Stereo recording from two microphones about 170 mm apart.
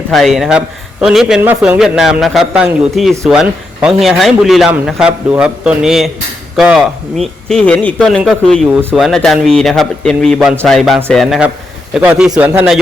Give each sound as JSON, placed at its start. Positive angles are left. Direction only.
{"t": 0.1, "sound": "a man's voice", "side_deg": 0}